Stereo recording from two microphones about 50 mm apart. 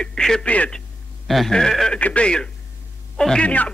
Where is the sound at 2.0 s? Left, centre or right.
Left.